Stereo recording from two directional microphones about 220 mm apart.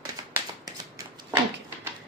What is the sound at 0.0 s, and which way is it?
Shuffling cards, 15° right (ahead or behind).